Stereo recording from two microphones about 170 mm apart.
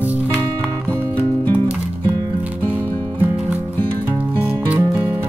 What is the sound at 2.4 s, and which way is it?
Music, 10° right (ahead or behind).